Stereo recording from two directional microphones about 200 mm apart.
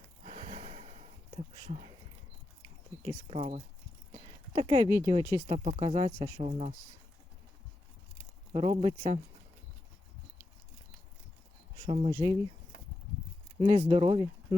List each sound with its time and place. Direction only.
0.3 s a sound: 30° right (ahead or behind)
3.1 s speech: 30° right (ahead or behind)
5.5 s speech: 30° right (ahead or behind)
8.5 s speech: 30° right (ahead or behind)
12.1 s speech: 20° right (ahead or behind)
13.6 s speech: 25° right (ahead or behind)